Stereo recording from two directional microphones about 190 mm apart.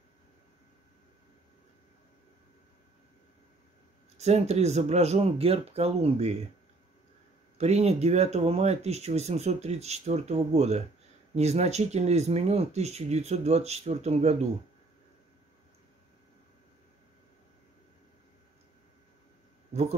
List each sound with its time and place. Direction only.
4.2 s speech: 35° right (ahead or behind)
7.5 s speech: 35° right (ahead or behind)